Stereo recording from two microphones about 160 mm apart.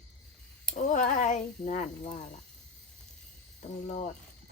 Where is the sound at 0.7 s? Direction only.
50° left (ahead or behind).